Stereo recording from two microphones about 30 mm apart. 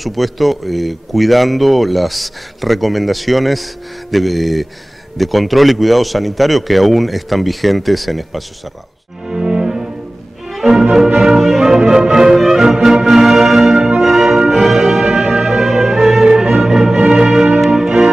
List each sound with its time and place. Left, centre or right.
0.0 s speech: centre
9.2 s music: centre
10.5 s music: centre
13.7 s music: centre